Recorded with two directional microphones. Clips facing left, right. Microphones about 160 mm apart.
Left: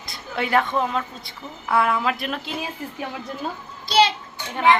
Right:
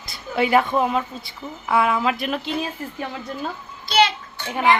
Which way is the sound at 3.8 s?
30° left (ahead or behind).